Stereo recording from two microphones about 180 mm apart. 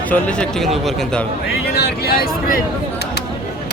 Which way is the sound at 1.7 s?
60° left (ahead or behind).